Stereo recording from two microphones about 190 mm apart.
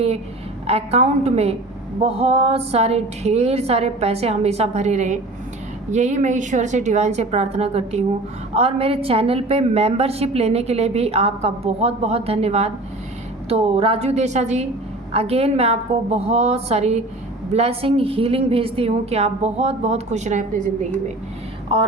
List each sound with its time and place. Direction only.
0.7 s a woman's voice: 35° right (ahead or behind)